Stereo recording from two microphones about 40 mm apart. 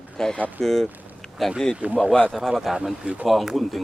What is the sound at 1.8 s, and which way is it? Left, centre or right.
Speech, right.